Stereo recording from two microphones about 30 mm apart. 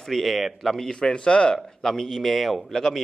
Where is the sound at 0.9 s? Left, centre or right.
Left.